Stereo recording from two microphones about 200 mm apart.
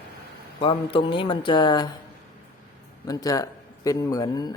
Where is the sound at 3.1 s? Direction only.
20° left (ahead or behind).